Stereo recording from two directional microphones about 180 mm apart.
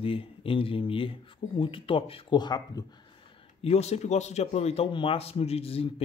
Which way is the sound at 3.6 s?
35° left (ahead or behind).